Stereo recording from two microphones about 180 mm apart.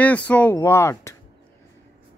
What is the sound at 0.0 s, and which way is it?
Speech, 10° left (ahead or behind).